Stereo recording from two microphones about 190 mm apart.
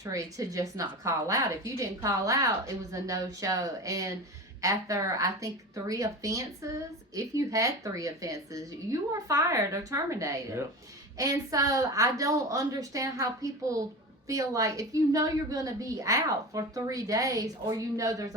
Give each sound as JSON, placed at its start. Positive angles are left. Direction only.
{"t": 0.0, "sound": "a woman's voice", "side_deg": -15}